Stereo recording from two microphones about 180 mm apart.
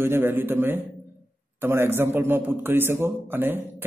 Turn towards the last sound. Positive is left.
turn(degrees=-10)  # may be behind; listen again after turning